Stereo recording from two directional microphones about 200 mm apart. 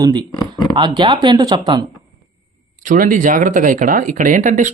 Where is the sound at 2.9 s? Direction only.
40° right (ahead or behind).